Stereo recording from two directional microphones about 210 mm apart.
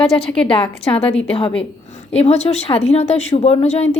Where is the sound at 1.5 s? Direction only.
30° left (ahead or behind).